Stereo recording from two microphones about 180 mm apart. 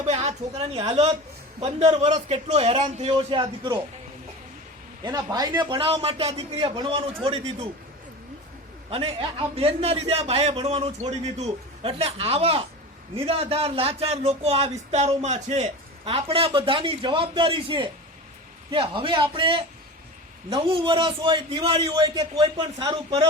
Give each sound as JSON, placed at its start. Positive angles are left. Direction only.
{"t": 0.0, "sound": "speech", "side_deg": -35}
{"t": 5.0, "sound": "a man's voice", "side_deg": -20}
{"t": 8.9, "sound": "a man's voice", "side_deg": -30}